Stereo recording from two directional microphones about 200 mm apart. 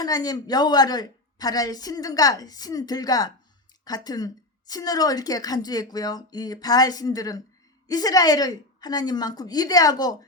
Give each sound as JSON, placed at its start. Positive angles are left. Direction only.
{"t": 0.0, "sound": "a woman's voice", "side_deg": 20}